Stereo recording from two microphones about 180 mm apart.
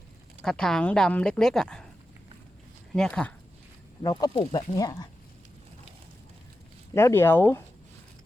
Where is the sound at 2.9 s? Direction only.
5° left (ahead or behind).